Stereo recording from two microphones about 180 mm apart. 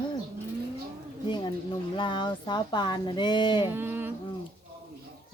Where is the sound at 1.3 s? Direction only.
25° left (ahead or behind).